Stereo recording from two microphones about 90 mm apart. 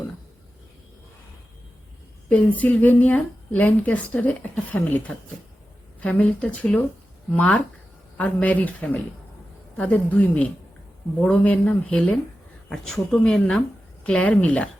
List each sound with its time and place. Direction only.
2.3 s speech: 15° left (ahead or behind)